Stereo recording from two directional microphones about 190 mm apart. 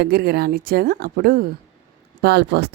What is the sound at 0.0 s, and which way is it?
A woman's voice, 55° right (ahead or behind).